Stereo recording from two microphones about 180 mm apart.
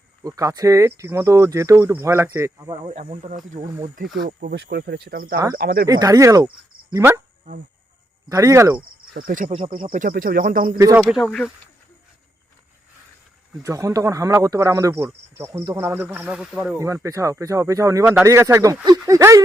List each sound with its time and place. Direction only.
0.2 s speech: 20° right (ahead or behind)
2.8 s speech: 35° right (ahead or behind)
3.9 s speech: 55° right (ahead or behind)
4.5 s speech: 70° right (ahead or behind)
5.9 s speech: 20° right (ahead or behind)
8.3 s speech: 20° right (ahead or behind)
9.1 s speech: 50° right (ahead or behind)
10.8 s speech: 15° right (ahead or behind)
11.1 s speech: 5° left (ahead or behind)
13.6 s speech: 15° right (ahead or behind)
16.7 s speech: 15° right (ahead or behind)